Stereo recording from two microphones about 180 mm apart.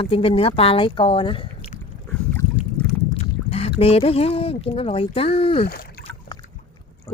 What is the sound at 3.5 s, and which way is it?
Speech, 35° left (ahead or behind).